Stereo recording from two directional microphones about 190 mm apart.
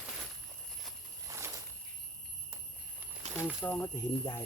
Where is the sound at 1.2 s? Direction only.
15° right (ahead or behind).